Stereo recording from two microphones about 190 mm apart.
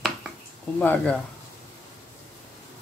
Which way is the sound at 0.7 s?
10° left (ahead or behind).